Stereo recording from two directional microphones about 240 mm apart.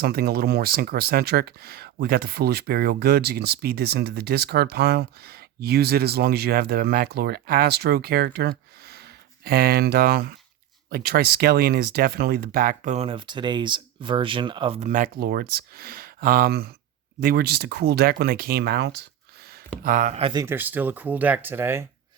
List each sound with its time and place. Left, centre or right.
0.0 s speech: right
19.8 s speech: right; by 21.8 s centre